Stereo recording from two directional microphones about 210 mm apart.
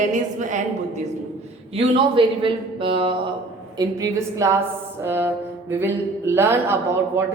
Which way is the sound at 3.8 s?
15° right (ahead or behind).